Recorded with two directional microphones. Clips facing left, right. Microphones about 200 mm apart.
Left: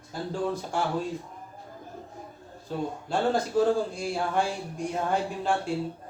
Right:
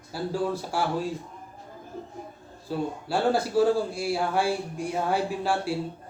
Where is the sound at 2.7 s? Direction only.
5° right (ahead or behind).